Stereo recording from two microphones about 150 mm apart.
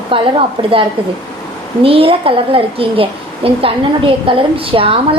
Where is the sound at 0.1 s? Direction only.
35° right (ahead or behind).